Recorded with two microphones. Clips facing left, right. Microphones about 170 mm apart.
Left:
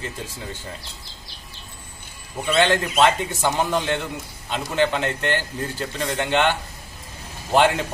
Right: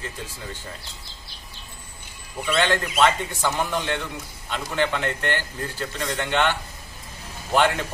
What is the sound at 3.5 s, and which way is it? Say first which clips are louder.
A man's voice: left 3 dB; 25° left (ahead or behind).